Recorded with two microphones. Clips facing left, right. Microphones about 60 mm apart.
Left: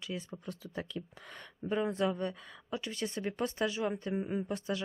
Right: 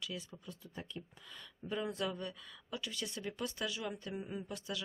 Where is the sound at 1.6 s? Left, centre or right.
Left.